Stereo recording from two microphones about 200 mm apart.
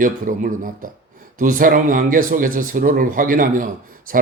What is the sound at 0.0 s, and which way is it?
Speech, 40° right (ahead or behind).